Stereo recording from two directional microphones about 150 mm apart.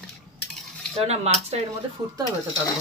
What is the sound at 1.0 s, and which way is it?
Speech, 45° right (ahead or behind).